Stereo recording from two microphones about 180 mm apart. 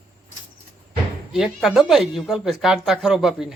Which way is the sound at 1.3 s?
Centre (ahead or behind).